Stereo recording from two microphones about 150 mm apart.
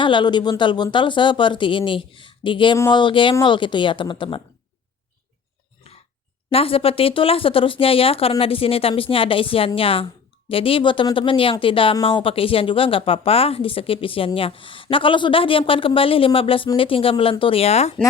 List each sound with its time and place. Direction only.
0.0 s speech: 30° left (ahead or behind)
6.5 s speech: 40° left (ahead or behind)